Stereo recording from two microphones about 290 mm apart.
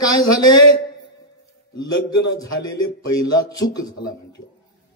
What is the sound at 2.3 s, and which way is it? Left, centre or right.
Speech, centre.